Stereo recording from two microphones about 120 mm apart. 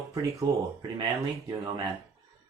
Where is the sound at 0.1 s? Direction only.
25° right (ahead or behind).